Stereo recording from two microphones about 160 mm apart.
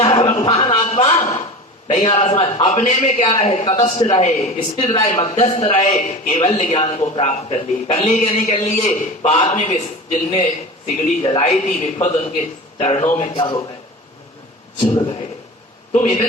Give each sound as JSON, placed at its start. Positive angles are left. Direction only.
{"t": 0.0, "sound": "a sound", "side_deg": 45}
{"t": 1.9, "sound": "a man's voice", "side_deg": 45}
{"t": 13.1, "sound": "a man's voice", "side_deg": 30}
{"t": 15.9, "sound": "a man's voice", "side_deg": 50}